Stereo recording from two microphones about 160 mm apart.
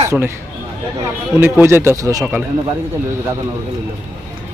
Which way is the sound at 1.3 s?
15° right (ahead or behind).